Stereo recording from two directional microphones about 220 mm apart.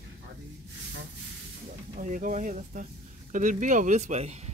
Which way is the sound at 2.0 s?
35° right (ahead or behind).